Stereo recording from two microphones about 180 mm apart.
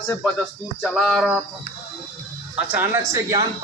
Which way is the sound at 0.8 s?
5° left (ahead or behind).